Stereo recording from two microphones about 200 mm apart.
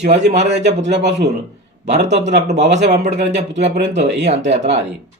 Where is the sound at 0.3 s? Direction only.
35° right (ahead or behind).